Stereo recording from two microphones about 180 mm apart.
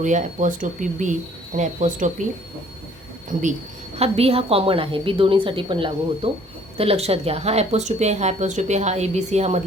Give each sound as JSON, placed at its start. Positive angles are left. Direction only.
{"t": 0.0, "sound": "speech", "side_deg": -45}
{"t": 3.9, "sound": "speech", "side_deg": -35}